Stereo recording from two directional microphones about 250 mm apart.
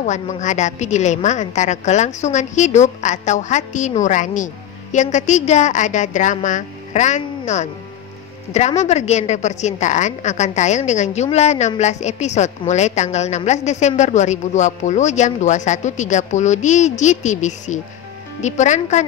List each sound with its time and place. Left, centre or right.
0.0 s a woman's voice: left